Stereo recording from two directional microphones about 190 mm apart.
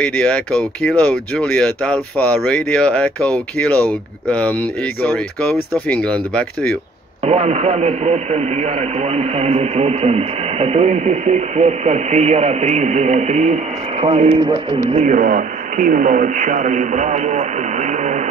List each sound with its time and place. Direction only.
0.0 s speech: 5° left (ahead or behind)
7.2 s speech: 35° right (ahead or behind)
14.9 s speech: 40° right (ahead or behind)